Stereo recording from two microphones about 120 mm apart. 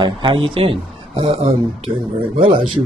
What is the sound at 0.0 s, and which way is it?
Speech, 40° right (ahead or behind).